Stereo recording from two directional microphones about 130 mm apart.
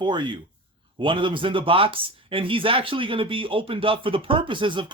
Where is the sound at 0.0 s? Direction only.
35° right (ahead or behind).